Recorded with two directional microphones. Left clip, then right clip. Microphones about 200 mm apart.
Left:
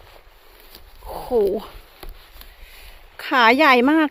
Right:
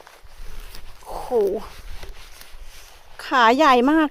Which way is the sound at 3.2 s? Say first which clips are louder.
Left 1 dB; 5° left (ahead or behind).